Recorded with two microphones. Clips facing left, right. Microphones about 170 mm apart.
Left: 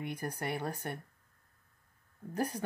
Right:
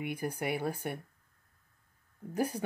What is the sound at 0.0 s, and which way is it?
Speech, 10° right (ahead or behind).